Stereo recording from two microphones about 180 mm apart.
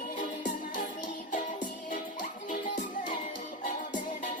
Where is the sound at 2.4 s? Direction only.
45° left (ahead or behind).